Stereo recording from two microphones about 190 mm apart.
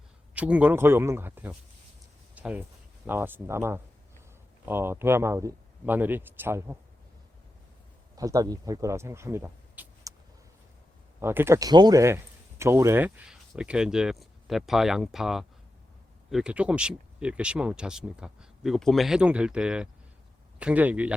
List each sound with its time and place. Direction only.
0.3 s speech: 5° right (ahead or behind)
8.1 s speech: 20° right (ahead or behind)
11.2 s speech: 15° right (ahead or behind)